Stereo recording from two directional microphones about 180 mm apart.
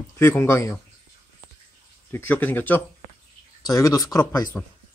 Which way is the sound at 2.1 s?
10° left (ahead or behind).